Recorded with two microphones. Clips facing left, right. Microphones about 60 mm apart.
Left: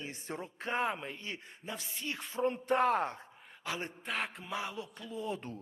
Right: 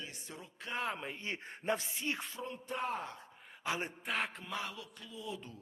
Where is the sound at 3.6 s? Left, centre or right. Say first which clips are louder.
Right 1 dB; centre.